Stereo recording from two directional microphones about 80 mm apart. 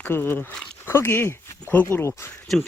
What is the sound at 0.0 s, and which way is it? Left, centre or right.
Speech, left.